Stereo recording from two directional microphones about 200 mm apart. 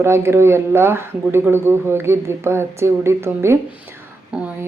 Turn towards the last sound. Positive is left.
turn(degrees=-5)  # may be behind; listen again after turning